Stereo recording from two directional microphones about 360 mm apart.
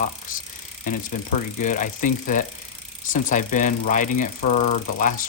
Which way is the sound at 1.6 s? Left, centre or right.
Left.